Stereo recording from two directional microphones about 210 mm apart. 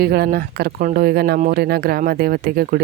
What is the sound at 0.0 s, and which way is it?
Speech, 50° right (ahead or behind).